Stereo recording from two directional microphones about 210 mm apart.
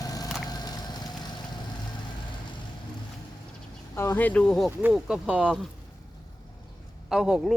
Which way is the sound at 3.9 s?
10° left (ahead or behind).